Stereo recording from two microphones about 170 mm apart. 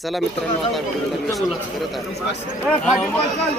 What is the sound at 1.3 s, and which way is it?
Speech, centre (ahead or behind).